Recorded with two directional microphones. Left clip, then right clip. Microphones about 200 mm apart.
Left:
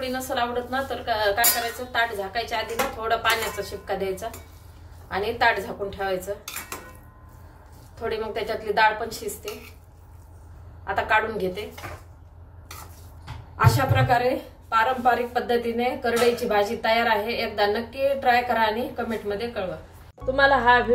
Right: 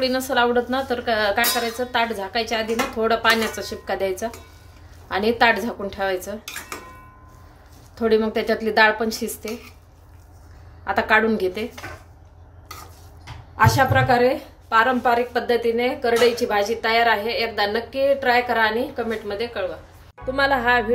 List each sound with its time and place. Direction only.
0.0 s a woman's voice: 50° right (ahead or behind)
5.1 s a woman's voice: 55° right (ahead or behind)
8.0 s a woman's voice: 55° right (ahead or behind)
10.9 s a woman's voice: 55° right (ahead or behind)
13.6 s a woman's voice: 60° right (ahead or behind)
20.2 s speech: 35° right (ahead or behind)